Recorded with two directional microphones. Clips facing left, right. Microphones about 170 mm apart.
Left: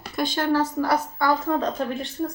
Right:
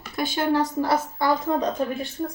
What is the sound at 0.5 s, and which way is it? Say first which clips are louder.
A woman's voice: even; 20° right (ahead or behind).